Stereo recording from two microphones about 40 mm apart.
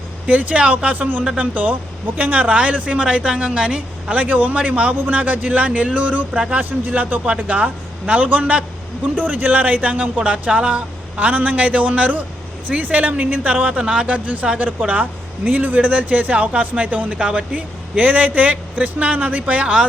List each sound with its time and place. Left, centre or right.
0.3 s speech: right
2.6 s speech: right
4.9 s speech: right
5.5 s speech: right
6.6 s speech: right
9.1 s speech: right
10.2 s speech: right
11.2 s speech: right
13.8 s speech: right
14.1 s speech: right
17.2 s speech: right
17.5 s speech: right